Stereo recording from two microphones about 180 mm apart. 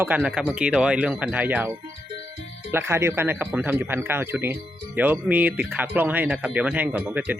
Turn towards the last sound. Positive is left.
turn(degrees=-10)  # may be behind; listen again after turning